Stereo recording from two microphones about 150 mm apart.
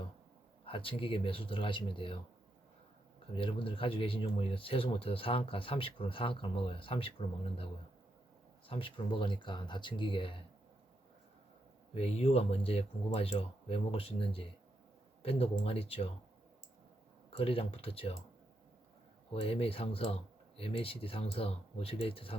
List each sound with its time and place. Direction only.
0.6 s speech: 35° left (ahead or behind)
3.3 s speech: 35° left (ahead or behind)
8.6 s speech: 35° left (ahead or behind)
11.9 s speech: 45° left (ahead or behind)
17.3 s speech: 40° left (ahead or behind)
19.3 s speech: 40° left (ahead or behind)